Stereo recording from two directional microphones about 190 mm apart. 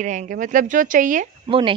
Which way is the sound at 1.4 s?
25° right (ahead or behind).